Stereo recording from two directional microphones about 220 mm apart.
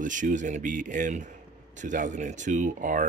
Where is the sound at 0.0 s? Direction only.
35° right (ahead or behind).